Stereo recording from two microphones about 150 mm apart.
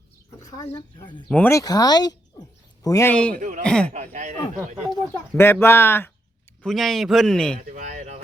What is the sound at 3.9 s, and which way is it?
Speech, 50° right (ahead or behind).